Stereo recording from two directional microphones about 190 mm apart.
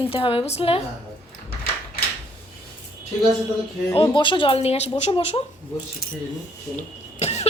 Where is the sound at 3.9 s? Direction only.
25° left (ahead or behind).